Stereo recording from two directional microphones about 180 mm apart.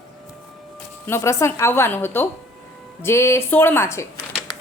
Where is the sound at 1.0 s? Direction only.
15° left (ahead or behind).